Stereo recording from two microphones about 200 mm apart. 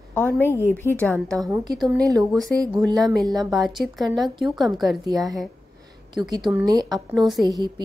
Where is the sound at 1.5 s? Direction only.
20° right (ahead or behind).